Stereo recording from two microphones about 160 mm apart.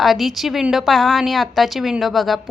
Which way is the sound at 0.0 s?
Centre (ahead or behind).